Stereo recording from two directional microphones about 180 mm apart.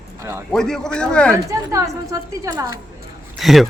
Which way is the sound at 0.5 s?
5° left (ahead or behind).